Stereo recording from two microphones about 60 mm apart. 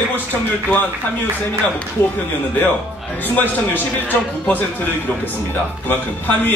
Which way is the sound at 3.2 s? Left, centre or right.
Left.